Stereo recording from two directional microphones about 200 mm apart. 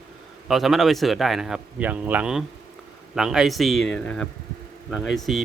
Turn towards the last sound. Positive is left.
turn(degrees=0)  # may be behind; listen again after turning